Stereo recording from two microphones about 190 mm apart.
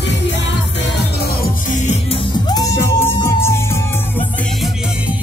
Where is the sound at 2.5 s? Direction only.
15° left (ahead or behind).